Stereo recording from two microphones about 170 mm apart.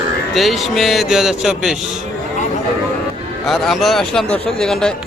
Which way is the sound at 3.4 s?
Centre (ahead or behind).